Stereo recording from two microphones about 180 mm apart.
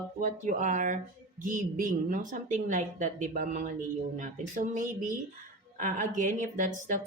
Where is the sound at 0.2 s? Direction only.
45° right (ahead or behind).